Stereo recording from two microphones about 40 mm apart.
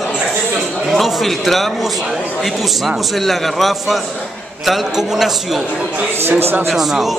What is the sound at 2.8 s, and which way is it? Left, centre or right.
A man's voice, centre.